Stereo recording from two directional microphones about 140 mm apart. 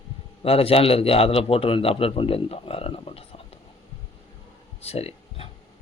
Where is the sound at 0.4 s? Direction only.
45° left (ahead or behind).